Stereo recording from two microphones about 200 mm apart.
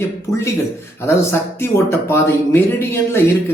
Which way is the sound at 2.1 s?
10° left (ahead or behind).